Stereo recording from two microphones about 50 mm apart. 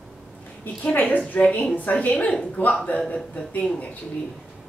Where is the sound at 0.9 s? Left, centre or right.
Left.